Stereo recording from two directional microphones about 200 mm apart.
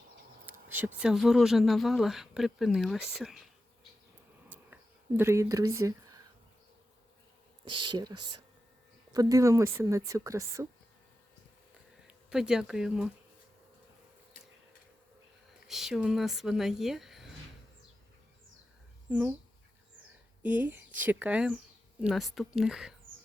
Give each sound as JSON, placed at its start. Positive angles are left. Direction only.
{"t": 0.7, "sound": "speech", "side_deg": -10}
{"t": 4.4, "sound": "a sound", "side_deg": -10}
{"t": 7.6, "sound": "speech", "side_deg": -25}
{"t": 12.0, "sound": "speech", "side_deg": -5}
{"t": 15.6, "sound": "speech", "side_deg": 0}
{"t": 19.1, "sound": "speech", "side_deg": -5}
{"t": 20.4, "sound": "speech", "side_deg": -10}